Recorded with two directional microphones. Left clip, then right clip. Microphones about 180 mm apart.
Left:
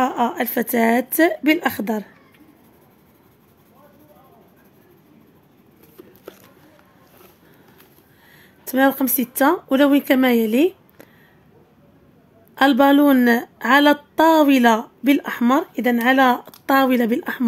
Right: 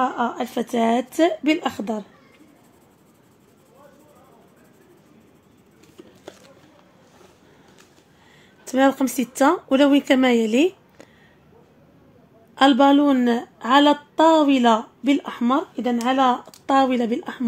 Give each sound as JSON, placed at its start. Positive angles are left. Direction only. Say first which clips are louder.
{"t": 0.0, "sound": "a woman's voice", "louder": "left 3 dB", "side_deg": 35}
{"t": 8.6, "sound": "speech", "louder": "left 1 dB", "side_deg": 15}
{"t": 12.5, "sound": "a woman's voice", "louder": "left 1 dB", "side_deg": 20}